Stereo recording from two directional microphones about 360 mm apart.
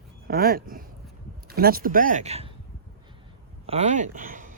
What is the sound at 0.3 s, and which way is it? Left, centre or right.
Speech, right.